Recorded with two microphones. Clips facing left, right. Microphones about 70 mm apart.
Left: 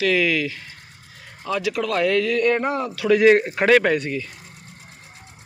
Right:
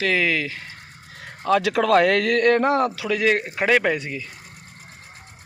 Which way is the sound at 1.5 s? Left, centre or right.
Right.